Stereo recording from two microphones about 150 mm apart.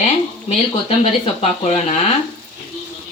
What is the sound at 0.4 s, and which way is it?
Speech, 40° left (ahead or behind).